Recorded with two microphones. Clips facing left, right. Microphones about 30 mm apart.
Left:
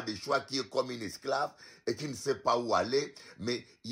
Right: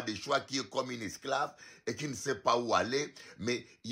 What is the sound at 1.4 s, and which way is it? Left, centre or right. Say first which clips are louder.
Speech: left 1 dB; left.